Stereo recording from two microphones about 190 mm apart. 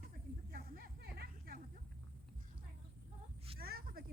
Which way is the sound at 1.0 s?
60° right (ahead or behind).